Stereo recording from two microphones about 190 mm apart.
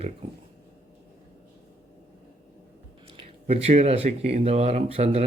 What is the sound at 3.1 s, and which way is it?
Speech, 35° right (ahead or behind).